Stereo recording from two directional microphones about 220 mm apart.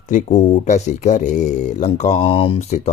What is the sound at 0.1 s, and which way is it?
Speech, 35° left (ahead or behind).